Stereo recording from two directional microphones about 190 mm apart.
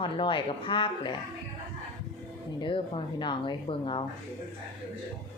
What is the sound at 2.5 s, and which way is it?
Speech, 25° left (ahead or behind).